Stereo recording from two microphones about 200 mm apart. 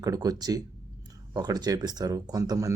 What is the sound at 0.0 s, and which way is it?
Speech, 20° right (ahead or behind).